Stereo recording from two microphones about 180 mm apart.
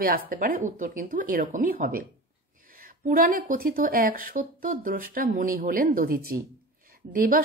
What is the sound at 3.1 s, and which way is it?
Speech, 50° right (ahead or behind).